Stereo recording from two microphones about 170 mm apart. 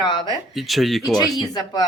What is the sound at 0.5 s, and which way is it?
Speech, centre (ahead or behind).